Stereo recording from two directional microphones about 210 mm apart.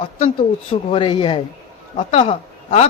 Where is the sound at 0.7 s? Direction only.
25° left (ahead or behind).